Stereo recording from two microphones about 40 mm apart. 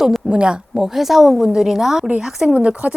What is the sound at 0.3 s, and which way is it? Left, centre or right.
Speech, right.